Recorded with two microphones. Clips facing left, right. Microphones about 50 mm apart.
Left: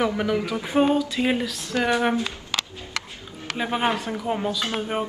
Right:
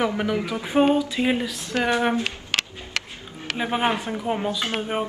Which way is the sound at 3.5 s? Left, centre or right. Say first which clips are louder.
Right 1 dB; centre.